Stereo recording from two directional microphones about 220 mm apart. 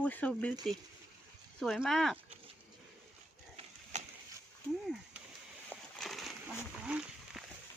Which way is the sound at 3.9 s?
30° right (ahead or behind).